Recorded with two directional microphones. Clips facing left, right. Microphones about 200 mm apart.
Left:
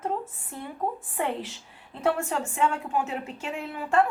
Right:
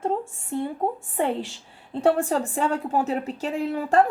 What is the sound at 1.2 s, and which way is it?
Speech, 30° right (ahead or behind).